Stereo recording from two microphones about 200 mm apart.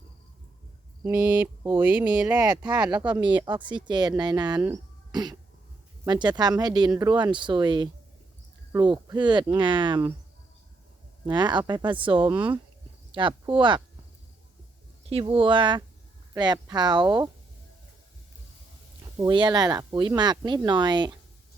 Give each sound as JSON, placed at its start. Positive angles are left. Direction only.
{"t": 1.0, "sound": "speech", "side_deg": -5}
{"t": 3.2, "sound": "speech", "side_deg": -20}
{"t": 11.3, "sound": "speech", "side_deg": -20}
{"t": 15.1, "sound": "speech", "side_deg": -25}
{"t": 19.1, "sound": "speech", "side_deg": -20}